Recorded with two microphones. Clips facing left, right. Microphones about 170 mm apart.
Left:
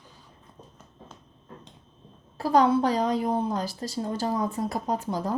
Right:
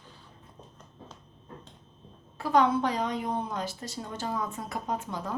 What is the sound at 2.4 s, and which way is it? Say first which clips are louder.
A woman's voice: left 3 dB; 35° left (ahead or behind).